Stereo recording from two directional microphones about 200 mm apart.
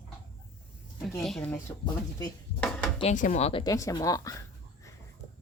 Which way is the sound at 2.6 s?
5° left (ahead or behind).